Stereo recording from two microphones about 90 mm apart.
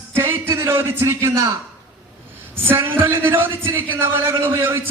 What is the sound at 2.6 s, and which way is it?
A woman's voice, 25° right (ahead or behind).